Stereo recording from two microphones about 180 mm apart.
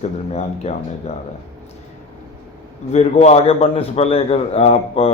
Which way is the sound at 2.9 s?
35° left (ahead or behind).